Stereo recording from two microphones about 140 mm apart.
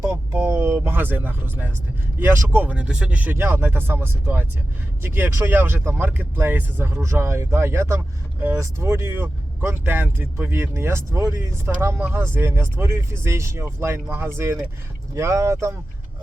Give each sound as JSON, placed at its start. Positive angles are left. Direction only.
{"t": 0.1, "sound": "speech", "side_deg": -15}